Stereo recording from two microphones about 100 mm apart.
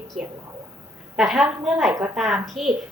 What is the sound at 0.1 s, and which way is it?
A woman's voice, 5° right (ahead or behind).